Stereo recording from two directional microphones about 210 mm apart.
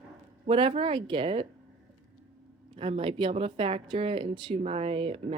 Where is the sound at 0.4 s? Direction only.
25° right (ahead or behind).